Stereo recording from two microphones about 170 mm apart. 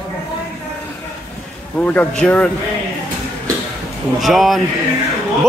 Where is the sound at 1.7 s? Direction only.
10° left (ahead or behind).